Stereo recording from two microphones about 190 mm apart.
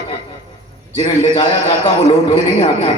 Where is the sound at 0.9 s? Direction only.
30° left (ahead or behind).